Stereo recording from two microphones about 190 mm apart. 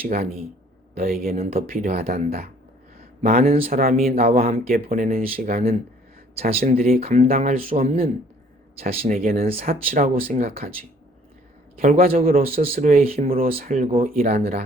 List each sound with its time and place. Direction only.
0.0 s speech: 50° right (ahead or behind)
3.3 s speech: 30° right (ahead or behind)
3.7 s speech: 50° right (ahead or behind)
6.9 s speech: 35° right (ahead or behind)
8.9 s speech: 30° right (ahead or behind)
9.1 s speech: 50° right (ahead or behind)
10.2 s speech: 35° right (ahead or behind)
11.8 s speech: 50° right (ahead or behind)
13.0 s speech: 30° right (ahead or behind); by 14.3 s 50° right (ahead or behind)
14.3 s speech: 35° right (ahead or behind)